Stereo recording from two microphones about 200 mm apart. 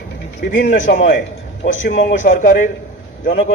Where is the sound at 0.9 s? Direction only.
50° left (ahead or behind).